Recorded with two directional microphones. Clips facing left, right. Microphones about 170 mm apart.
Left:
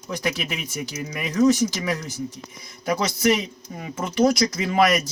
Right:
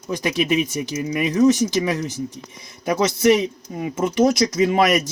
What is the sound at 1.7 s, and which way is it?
Speech, 20° right (ahead or behind).